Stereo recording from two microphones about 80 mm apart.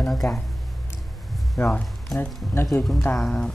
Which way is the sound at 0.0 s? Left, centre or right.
Centre.